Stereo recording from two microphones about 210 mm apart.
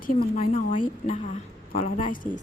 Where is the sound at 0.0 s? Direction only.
40° left (ahead or behind).